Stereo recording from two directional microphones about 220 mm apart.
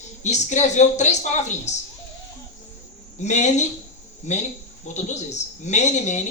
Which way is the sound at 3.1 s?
30° left (ahead or behind).